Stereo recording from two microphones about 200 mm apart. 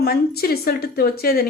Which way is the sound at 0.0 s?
50° left (ahead or behind).